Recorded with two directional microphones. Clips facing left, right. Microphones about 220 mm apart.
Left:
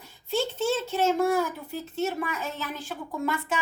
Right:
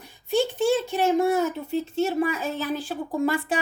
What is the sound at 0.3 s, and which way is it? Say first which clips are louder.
A child's voice: right 5 dB; 15° right (ahead or behind).